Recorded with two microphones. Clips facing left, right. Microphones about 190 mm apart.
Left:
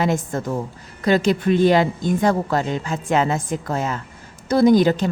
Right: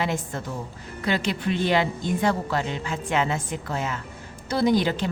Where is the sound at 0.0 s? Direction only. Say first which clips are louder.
Left 6 dB; 45° left (ahead or behind).